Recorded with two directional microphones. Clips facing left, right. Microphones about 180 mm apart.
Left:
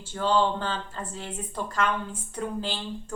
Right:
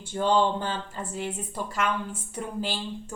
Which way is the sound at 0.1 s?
15° right (ahead or behind).